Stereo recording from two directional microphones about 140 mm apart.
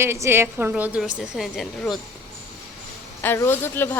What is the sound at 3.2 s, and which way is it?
Speech, 15° left (ahead or behind).